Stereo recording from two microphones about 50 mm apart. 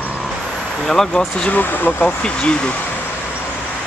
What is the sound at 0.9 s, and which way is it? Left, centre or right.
Speech, centre.